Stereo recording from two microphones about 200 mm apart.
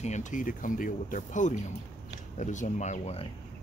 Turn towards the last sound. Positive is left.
turn(degrees=30)  # may be behind; listen again after turning